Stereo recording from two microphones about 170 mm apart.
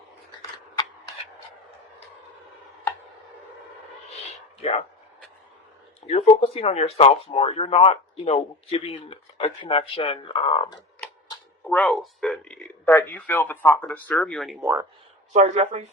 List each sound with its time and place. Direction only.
6.1 s speech: 35° left (ahead or behind)
11.6 s speech: 10° left (ahead or behind)
14.6 s speech: 15° right (ahead or behind)
15.3 s speech: 45° right (ahead or behind)